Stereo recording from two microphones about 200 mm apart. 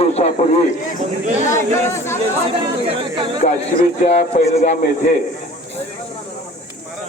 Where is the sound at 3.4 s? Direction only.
40° left (ahead or behind).